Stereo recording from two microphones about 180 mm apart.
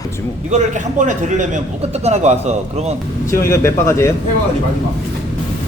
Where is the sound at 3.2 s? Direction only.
15° left (ahead or behind).